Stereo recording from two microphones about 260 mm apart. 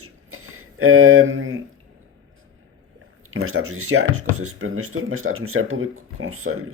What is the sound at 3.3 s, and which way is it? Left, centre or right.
Speech, right.